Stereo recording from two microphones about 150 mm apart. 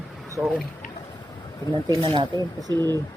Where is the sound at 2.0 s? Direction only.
35° right (ahead or behind).